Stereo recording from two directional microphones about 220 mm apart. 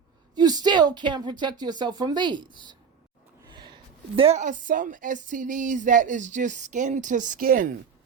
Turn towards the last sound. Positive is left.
turn(degrees=-40)  # may be behind; listen again after turning